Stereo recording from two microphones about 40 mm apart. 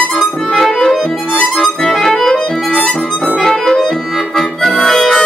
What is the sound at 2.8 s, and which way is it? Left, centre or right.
Harmonica, centre.